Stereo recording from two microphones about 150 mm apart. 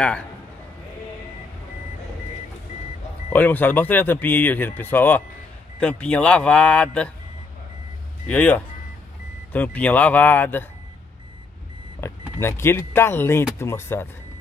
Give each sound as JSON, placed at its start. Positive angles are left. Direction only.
{"t": 3.3, "sound": "speech", "side_deg": 10}
{"t": 8.3, "sound": "speech", "side_deg": 10}
{"t": 12.0, "sound": "speech", "side_deg": 15}